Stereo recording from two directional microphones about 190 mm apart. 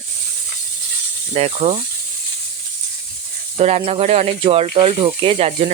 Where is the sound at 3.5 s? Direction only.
30° right (ahead or behind).